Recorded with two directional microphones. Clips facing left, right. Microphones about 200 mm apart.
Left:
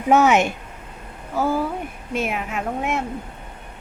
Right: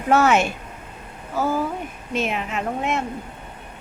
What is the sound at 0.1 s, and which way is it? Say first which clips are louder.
A woman's voice: left 2 dB; 15° left (ahead or behind).